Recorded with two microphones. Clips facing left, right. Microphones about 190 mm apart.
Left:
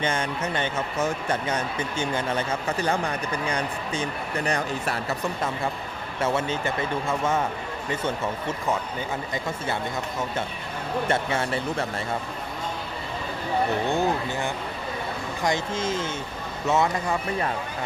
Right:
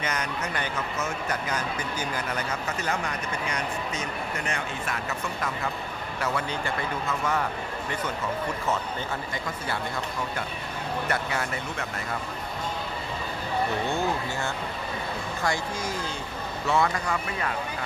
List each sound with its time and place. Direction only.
0.0 s speech: 30° left (ahead or behind)
11.1 s speech: 25° left (ahead or behind)
13.8 s speech: 15° left (ahead or behind)